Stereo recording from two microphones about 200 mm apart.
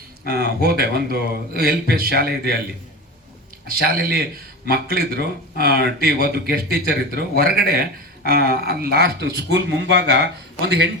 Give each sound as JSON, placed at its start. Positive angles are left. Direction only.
{"t": 0.3, "sound": "a man's voice", "side_deg": -50}
{"t": 3.7, "sound": "a man's voice", "side_deg": -50}